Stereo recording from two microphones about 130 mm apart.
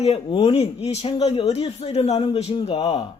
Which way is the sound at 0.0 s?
50° left (ahead or behind).